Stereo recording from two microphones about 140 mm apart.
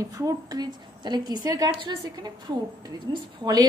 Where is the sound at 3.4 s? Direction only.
30° right (ahead or behind).